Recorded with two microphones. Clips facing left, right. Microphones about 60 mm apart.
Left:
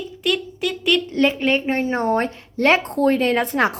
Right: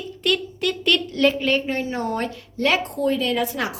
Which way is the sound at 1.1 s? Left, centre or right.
Left.